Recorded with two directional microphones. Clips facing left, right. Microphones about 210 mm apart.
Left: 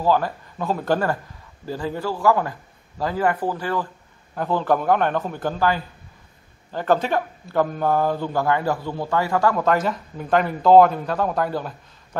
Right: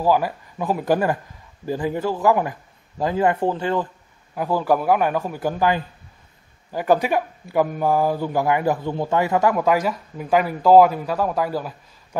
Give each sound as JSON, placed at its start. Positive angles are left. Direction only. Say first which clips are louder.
{"t": 0.0, "sound": "speech", "louder": "right 1 dB", "side_deg": -10}
{"t": 4.4, "sound": "speech", "louder": "right 1 dB", "side_deg": -10}